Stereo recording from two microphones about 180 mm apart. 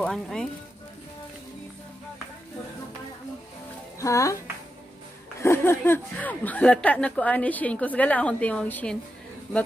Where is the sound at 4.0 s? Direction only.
15° left (ahead or behind).